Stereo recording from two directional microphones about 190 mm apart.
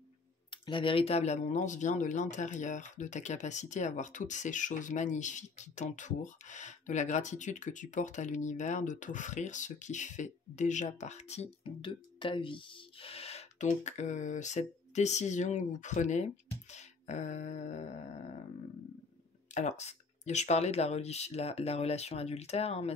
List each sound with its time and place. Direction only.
0.5 s speech: 25° left (ahead or behind)
16.7 s a sound: 40° left (ahead or behind)
19.5 s speech: 35° left (ahead or behind)